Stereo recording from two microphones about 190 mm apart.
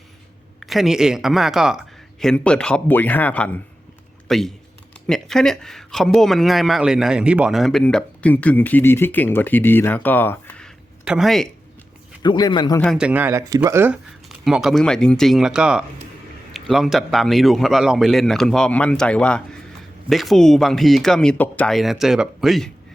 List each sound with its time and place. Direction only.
0.6 s speech: centre (ahead or behind)
11.0 s speech: 5° right (ahead or behind)
12.2 s a man's voice: 25° left (ahead or behind)
12.8 s speech: centre (ahead or behind)